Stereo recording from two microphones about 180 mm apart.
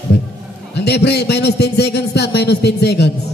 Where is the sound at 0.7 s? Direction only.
70° left (ahead or behind).